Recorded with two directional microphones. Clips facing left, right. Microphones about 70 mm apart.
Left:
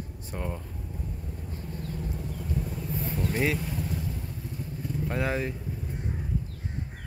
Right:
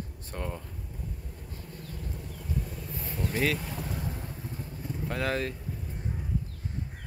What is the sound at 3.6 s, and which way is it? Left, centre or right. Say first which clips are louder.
Vehicle: left 2 dB; right.